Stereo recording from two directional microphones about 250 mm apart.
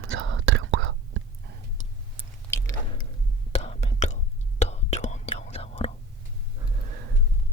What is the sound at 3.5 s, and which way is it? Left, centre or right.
Whispering, left.